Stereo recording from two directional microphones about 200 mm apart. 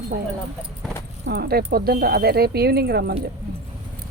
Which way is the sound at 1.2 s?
50° right (ahead or behind).